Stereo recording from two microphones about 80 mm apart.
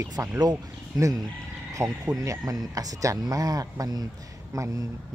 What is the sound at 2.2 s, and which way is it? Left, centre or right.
Speech, right.